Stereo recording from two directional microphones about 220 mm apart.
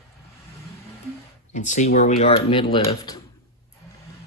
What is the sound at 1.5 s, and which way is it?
Speech, 35° left (ahead or behind).